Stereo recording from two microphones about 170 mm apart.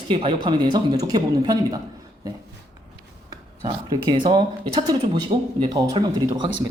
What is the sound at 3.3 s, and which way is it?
Speech, 25° right (ahead or behind).